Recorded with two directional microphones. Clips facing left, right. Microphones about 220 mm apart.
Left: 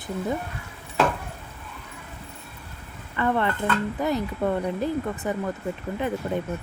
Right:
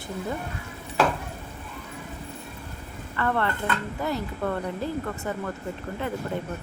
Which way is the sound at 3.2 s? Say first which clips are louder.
Left 2 dB; 15° left (ahead or behind).